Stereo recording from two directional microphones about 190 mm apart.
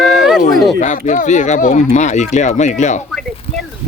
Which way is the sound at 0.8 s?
40° left (ahead or behind).